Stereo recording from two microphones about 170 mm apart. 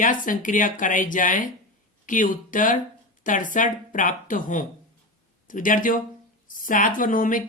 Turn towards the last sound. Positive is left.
turn(degrees=50)  # may be behind; listen again after turning